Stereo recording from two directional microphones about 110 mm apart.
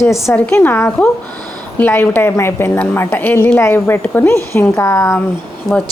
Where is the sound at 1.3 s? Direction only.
35° right (ahead or behind).